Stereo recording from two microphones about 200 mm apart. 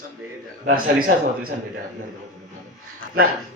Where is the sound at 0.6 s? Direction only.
45° right (ahead or behind).